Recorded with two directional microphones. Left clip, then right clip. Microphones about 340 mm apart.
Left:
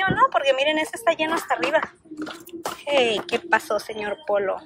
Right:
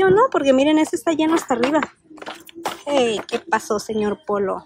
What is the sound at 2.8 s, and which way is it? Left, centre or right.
Speech, centre.